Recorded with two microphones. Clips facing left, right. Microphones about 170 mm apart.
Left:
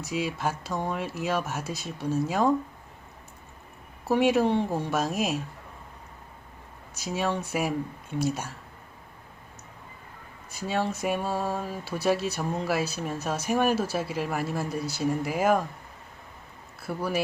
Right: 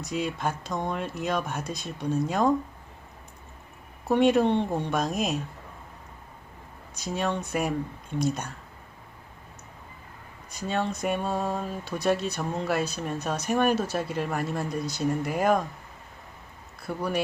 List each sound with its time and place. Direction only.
0.0 s speech: 5° left (ahead or behind)
4.1 s speech: 5° left (ahead or behind)
6.9 s speech: 10° left (ahead or behind)
10.5 s speech: 5° left (ahead or behind)
16.8 s speech: 5° left (ahead or behind)